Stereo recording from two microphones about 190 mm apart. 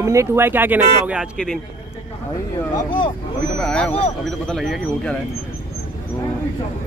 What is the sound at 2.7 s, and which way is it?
Speech, 25° left (ahead or behind).